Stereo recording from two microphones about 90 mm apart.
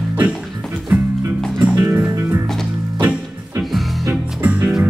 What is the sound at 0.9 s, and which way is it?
Music, 20° right (ahead or behind).